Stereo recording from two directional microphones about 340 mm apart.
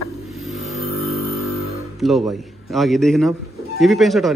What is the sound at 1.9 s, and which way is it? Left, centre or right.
A man's voice, centre.